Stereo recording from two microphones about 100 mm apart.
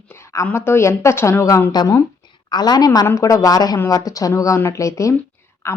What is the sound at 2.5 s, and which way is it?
A woman's voice, 45° left (ahead or behind).